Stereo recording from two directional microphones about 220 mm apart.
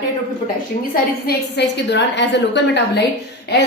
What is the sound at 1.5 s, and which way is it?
A woman's voice, 50° left (ahead or behind).